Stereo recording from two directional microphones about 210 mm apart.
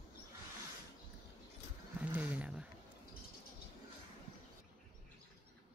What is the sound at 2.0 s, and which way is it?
Roaring cats, 5° right (ahead or behind).